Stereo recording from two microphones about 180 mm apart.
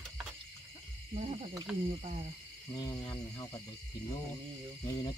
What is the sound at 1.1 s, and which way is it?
Speech, 35° right (ahead or behind).